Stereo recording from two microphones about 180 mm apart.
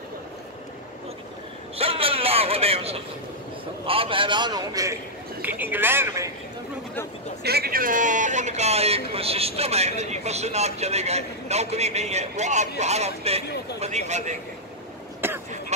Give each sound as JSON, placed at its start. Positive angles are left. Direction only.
{"t": 1.8, "sound": "a sound", "side_deg": -30}
{"t": 3.8, "sound": "a man's voice", "side_deg": -30}
{"t": 7.4, "sound": "a man's voice", "side_deg": -60}
{"t": 15.2, "sound": "vehicle", "side_deg": -10}